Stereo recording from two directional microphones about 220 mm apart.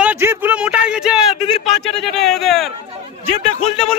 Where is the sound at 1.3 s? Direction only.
25° left (ahead or behind).